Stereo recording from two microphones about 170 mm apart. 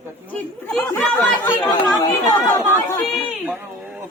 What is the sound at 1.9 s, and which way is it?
Speech, 20° left (ahead or behind).